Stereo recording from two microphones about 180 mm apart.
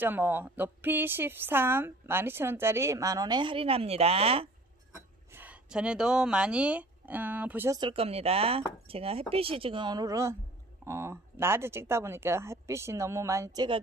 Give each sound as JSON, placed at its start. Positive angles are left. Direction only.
{"t": 0.0, "sound": "a woman's voice", "side_deg": -10}
{"t": 5.3, "sound": "speech", "side_deg": -10}
{"t": 7.8, "sound": "a woman's voice", "side_deg": -30}